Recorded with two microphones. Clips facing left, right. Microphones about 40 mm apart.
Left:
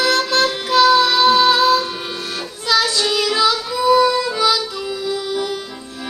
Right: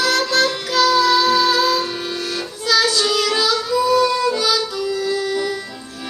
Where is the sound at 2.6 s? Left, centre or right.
Left.